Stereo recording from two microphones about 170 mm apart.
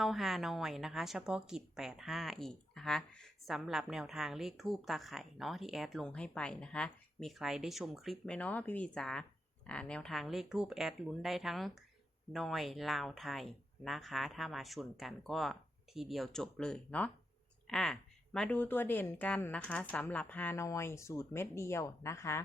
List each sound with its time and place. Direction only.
0.0 s a woman's voice: centre (ahead or behind); by 22.4 s 15° left (ahead or behind)